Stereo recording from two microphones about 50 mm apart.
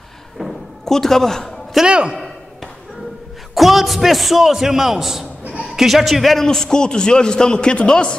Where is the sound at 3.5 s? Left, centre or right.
Centre.